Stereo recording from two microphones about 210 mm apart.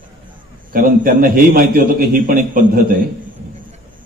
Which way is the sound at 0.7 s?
45° right (ahead or behind).